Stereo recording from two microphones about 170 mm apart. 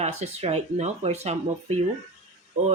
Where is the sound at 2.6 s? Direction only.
40° right (ahead or behind).